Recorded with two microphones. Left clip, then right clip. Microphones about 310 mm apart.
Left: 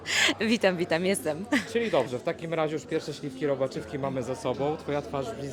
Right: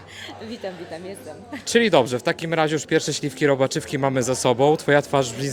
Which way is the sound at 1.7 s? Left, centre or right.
Right.